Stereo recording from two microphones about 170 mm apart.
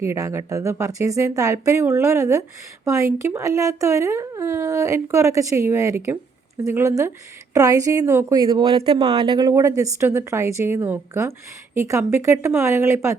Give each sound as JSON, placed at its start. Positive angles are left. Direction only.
{"t": 0.0, "sound": "a woman's voice", "side_deg": -15}